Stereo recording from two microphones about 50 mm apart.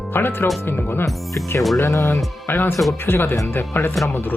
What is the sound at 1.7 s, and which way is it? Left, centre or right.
Speech, left.